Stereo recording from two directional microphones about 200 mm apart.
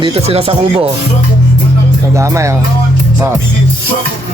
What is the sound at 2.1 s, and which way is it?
Speech, 15° right (ahead or behind).